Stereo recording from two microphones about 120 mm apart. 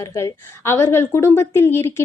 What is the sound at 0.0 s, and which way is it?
A woman's voice, 25° left (ahead or behind).